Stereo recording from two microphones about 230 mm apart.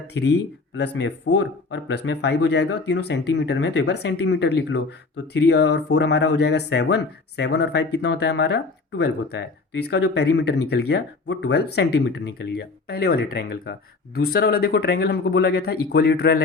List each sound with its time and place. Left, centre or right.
0.1 s speech: left